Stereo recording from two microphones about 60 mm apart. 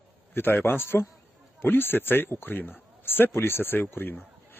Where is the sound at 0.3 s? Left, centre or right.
Left.